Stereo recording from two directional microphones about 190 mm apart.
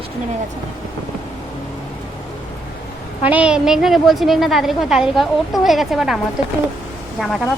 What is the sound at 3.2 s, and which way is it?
A woman's voice, 10° right (ahead or behind).